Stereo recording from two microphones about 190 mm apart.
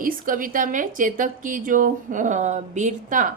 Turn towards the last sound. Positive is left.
turn(degrees=-40)  # may be behind; listen again after turning